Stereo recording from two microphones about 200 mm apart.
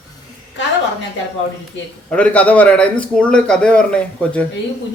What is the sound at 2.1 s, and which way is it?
A man's voice, 5° left (ahead or behind).